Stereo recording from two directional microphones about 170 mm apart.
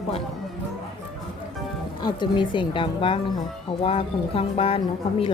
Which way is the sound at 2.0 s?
25° left (ahead or behind).